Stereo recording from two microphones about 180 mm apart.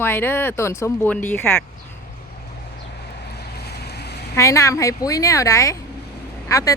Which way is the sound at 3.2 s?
65° left (ahead or behind).